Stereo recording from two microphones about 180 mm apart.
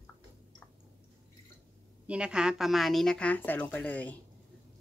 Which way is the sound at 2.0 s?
5° right (ahead or behind).